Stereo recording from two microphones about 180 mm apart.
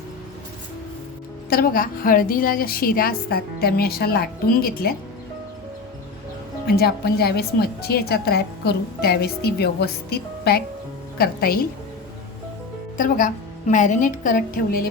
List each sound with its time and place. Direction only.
1.5 s a woman's voice: 55° left (ahead or behind)
6.7 s a woman's voice: 60° left (ahead or behind)
13.0 s a woman's voice: 45° left (ahead or behind)